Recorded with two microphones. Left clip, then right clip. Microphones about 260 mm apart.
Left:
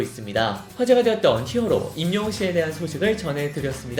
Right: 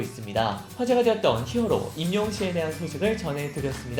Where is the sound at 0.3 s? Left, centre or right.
Centre.